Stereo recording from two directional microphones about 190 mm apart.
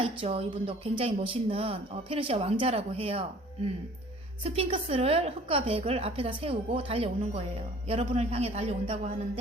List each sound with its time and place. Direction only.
0.0 s speech: 30° right (ahead or behind)